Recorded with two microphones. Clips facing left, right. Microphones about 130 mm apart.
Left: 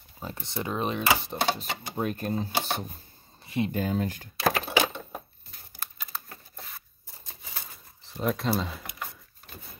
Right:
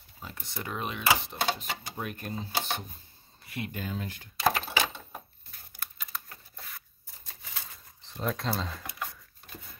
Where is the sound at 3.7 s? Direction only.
40° left (ahead or behind).